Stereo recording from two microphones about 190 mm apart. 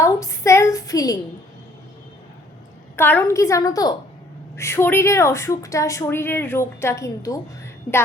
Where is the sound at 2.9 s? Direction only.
10° left (ahead or behind).